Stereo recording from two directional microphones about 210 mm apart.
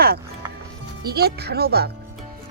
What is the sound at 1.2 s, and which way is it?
Speech, 50° right (ahead or behind).